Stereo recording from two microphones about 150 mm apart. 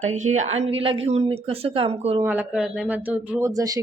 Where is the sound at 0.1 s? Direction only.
50° right (ahead or behind).